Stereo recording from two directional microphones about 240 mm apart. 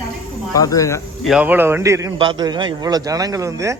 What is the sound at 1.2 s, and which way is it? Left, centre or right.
A man's voice, centre.